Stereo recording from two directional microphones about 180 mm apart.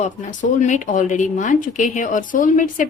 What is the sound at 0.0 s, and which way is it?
Speech, 40° left (ahead or behind).